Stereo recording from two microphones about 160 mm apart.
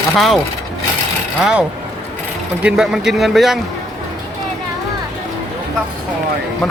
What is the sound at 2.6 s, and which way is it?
Speech, 5° right (ahead or behind).